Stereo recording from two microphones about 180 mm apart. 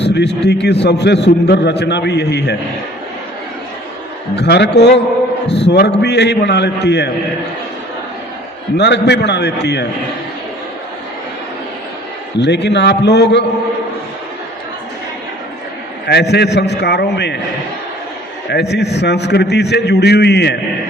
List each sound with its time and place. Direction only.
0.0 s a man's voice: 70° left (ahead or behind)
4.4 s a man's voice: 70° left (ahead or behind)
8.8 s a man's voice: 70° left (ahead or behind)
12.4 s a man's voice: 70° left (ahead or behind)
16.0 s a man's voice: 70° left (ahead or behind)
18.4 s a man's voice: 70° left (ahead or behind)